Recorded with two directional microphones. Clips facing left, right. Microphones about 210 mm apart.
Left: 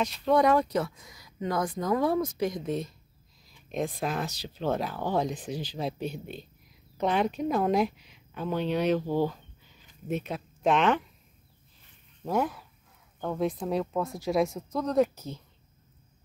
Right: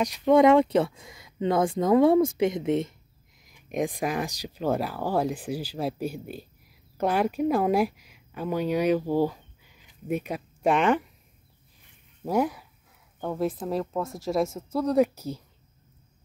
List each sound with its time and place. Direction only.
0.0 s a woman's voice: 15° right (ahead or behind)
12.3 s speech: 10° right (ahead or behind)